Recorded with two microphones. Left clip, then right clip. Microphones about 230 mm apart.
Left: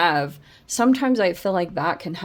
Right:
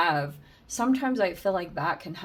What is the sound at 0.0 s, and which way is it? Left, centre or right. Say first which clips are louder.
Speech: left 5 dB; left.